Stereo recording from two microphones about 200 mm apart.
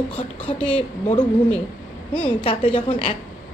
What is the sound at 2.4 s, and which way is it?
Speech, 30° left (ahead or behind).